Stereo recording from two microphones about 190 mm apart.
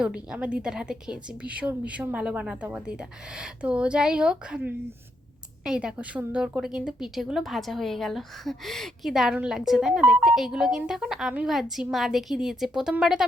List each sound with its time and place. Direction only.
0.0 s a woman's voice: 5° right (ahead or behind)